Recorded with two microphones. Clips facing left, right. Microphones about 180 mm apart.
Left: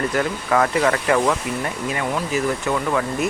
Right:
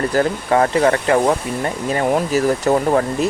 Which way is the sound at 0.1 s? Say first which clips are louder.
Right 4 dB; 35° right (ahead or behind).